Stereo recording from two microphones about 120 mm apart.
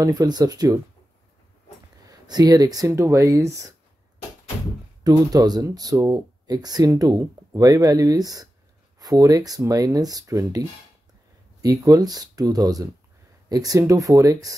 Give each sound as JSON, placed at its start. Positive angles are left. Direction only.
{"t": 0.0, "sound": "speech", "side_deg": -35}
{"t": 2.0, "sound": "speech", "side_deg": -35}
{"t": 5.0, "sound": "speech", "side_deg": -35}
{"t": 11.6, "sound": "speech", "side_deg": -30}